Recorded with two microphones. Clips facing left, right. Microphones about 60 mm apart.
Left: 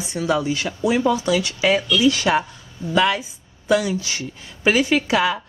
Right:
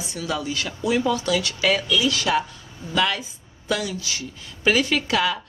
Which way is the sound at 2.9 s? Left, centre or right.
Centre.